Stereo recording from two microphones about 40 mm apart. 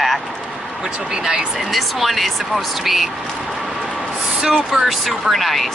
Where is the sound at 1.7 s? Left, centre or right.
Centre.